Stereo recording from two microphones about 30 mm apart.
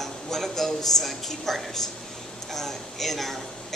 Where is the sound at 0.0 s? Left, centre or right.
Centre.